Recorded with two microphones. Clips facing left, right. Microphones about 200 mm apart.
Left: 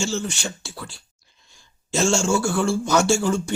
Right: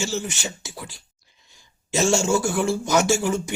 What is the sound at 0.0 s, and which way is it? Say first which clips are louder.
A man's voice: left 2 dB; 20° right (ahead or behind).